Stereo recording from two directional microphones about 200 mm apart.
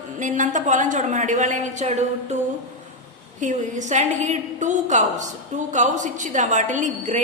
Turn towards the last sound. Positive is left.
turn(degrees=-35)  # may be behind; listen again after turning